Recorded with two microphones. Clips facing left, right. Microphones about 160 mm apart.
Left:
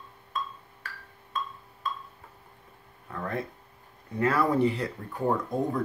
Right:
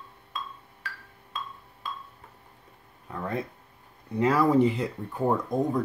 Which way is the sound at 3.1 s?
10° right (ahead or behind).